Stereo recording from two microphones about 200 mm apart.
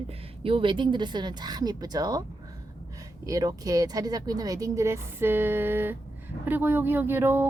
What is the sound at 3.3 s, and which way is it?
Speech, 15° right (ahead or behind).